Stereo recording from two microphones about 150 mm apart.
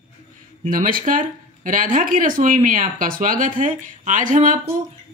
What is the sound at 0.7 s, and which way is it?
Speech, 65° right (ahead or behind).